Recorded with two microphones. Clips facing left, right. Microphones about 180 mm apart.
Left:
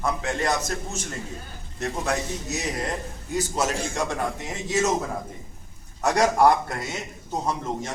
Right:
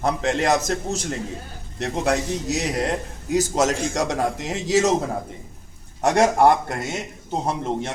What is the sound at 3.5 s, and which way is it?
A man's voice, 90° right.